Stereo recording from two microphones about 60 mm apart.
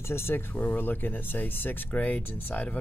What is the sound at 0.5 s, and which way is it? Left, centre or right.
Speech, left.